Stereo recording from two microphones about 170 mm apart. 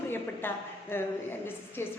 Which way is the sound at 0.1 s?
10° left (ahead or behind).